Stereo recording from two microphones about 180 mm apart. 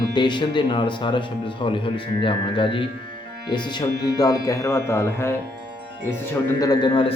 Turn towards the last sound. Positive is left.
turn(degrees=25)  # may be behind; listen again after turning